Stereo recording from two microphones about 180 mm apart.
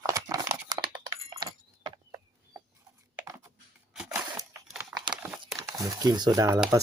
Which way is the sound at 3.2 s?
20° right (ahead or behind).